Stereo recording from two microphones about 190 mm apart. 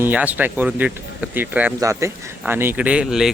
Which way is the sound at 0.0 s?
10° right (ahead or behind).